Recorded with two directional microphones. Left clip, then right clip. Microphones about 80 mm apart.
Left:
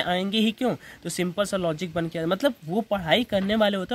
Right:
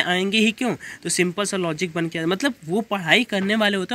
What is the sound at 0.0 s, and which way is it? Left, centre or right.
Speech, left.